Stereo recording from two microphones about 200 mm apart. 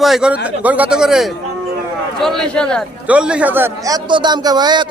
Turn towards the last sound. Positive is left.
turn(degrees=-20)  # may be behind; listen again after turning